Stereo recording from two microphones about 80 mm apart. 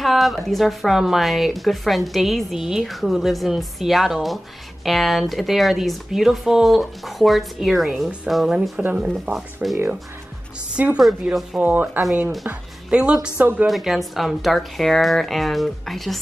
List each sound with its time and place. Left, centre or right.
0.0 s speech: centre
8.8 s speech: centre
9.1 s speech: centre
10.8 s speech: centre
11.6 s a woman's voice: right
13.7 s speech: centre